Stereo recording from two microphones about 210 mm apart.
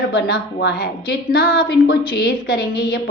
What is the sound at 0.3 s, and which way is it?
A woman's voice, 50° left (ahead or behind).